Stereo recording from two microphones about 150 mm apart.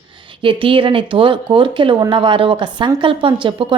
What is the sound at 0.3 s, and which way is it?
Speech, 35° right (ahead or behind).